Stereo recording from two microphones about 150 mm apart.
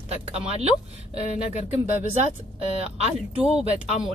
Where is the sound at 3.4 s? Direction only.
5° right (ahead or behind).